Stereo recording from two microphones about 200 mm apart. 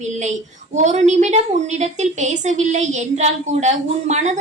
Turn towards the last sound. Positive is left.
turn(degrees=-35)  # may be behind; listen again after turning